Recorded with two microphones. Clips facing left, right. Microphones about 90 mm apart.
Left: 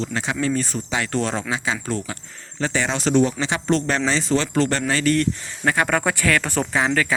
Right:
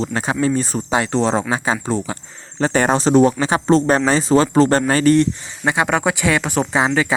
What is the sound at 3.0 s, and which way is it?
Speech, 35° right (ahead or behind).